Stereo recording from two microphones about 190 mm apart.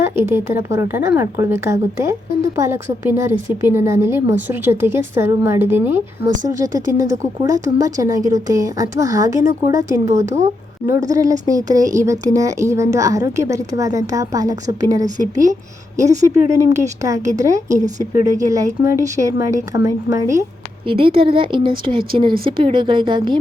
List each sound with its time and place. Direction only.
0.0 s speech: 10° right (ahead or behind)
20.8 s a woman's voice: 30° right (ahead or behind)